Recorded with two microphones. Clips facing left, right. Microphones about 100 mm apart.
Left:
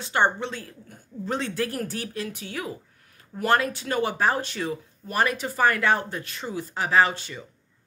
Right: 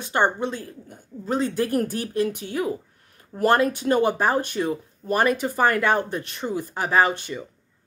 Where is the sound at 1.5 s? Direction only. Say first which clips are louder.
Right 5 dB; 20° right (ahead or behind).